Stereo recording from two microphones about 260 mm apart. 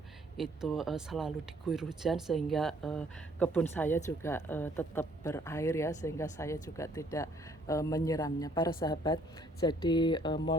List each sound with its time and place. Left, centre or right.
0.3 s speech: centre